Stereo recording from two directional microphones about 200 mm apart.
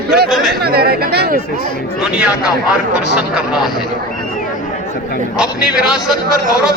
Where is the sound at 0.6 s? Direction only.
50° right (ahead or behind).